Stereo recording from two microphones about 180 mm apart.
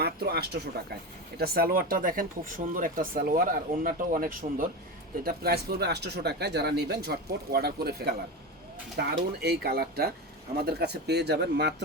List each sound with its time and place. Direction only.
0.0 s speech: 60° right (ahead or behind)